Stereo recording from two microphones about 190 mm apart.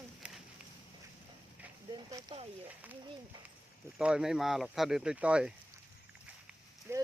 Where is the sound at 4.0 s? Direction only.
5° right (ahead or behind).